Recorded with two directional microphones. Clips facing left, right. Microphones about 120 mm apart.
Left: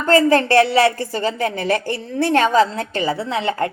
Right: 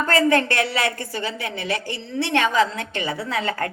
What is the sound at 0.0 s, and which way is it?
A woman's voice, 30° left (ahead or behind).